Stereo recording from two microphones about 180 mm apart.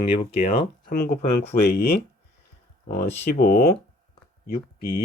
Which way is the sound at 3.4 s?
50° left (ahead or behind).